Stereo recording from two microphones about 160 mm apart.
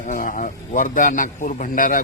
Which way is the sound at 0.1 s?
55° left (ahead or behind).